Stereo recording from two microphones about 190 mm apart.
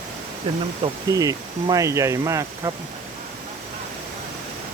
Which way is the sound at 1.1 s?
20° right (ahead or behind).